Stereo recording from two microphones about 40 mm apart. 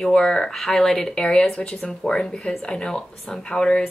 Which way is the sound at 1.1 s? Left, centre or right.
Left.